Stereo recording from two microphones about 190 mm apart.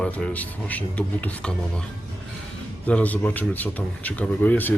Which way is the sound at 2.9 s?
5° left (ahead or behind).